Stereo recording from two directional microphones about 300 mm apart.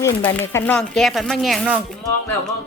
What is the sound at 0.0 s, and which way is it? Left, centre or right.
Speech, centre.